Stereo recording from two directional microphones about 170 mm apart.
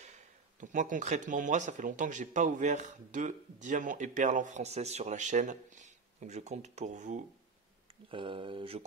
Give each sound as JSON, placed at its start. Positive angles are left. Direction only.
{"t": 0.6, "sound": "speech", "side_deg": -50}
{"t": 8.1, "sound": "speech", "side_deg": -30}